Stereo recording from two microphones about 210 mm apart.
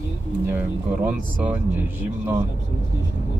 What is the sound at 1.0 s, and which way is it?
Speech, 5° right (ahead or behind).